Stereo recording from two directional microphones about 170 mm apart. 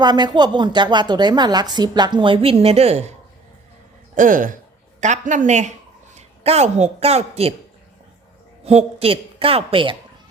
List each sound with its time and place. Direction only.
0.0 s a woman's voice: 25° right (ahead or behind)
4.1 s speech: 50° right (ahead or behind)
8.6 s a woman's voice: 35° right (ahead or behind)